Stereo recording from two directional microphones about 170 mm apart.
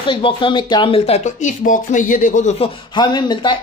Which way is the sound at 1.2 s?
50° left (ahead or behind).